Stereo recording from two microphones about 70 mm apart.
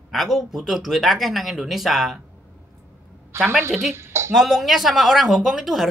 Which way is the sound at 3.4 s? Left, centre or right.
Right.